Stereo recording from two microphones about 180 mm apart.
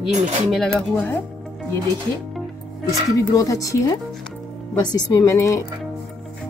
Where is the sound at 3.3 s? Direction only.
20° left (ahead or behind).